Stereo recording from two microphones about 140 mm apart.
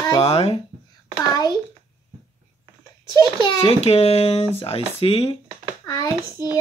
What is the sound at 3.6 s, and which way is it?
Speech, 45° left (ahead or behind).